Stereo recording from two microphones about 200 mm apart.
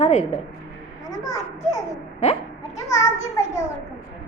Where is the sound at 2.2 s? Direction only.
35° left (ahead or behind).